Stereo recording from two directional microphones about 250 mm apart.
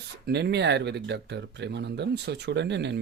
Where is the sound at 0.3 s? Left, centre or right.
Right.